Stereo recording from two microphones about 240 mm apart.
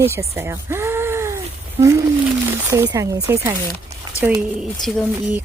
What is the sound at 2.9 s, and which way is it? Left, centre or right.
Speech, centre.